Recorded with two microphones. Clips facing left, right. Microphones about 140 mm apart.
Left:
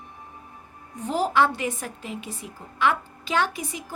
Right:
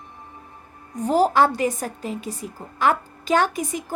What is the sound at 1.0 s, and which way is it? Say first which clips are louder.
A woman's voice: right 5 dB; 40° right (ahead or behind).